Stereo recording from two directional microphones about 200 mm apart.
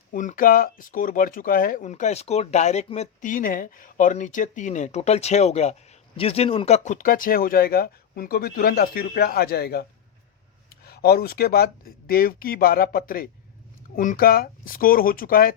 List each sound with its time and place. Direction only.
0.1 s speech: 40° left (ahead or behind)